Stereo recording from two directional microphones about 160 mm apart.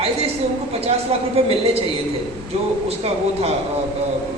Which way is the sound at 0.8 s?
40° right (ahead or behind).